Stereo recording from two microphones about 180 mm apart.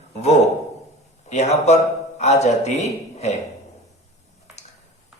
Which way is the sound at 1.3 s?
40° left (ahead or behind).